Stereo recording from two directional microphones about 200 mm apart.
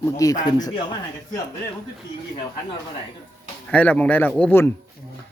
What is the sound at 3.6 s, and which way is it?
Speech, 5° left (ahead or behind).